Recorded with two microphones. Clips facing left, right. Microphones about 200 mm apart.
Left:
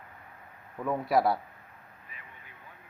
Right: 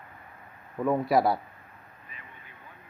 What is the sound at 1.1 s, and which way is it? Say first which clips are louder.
Speech: even; centre (ahead or behind).